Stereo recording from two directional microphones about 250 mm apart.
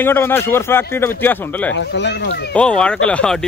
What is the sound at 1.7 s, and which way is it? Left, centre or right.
Speech, left.